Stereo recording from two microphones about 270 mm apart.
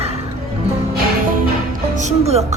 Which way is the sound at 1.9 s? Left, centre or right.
Right.